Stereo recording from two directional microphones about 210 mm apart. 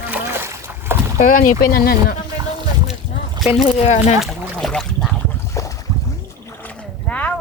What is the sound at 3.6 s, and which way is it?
Speech, 30° left (ahead or behind).